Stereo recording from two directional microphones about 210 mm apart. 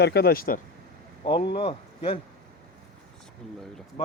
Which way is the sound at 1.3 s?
25° left (ahead or behind).